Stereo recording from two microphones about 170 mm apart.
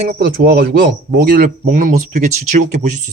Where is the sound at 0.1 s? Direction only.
60° right (ahead or behind).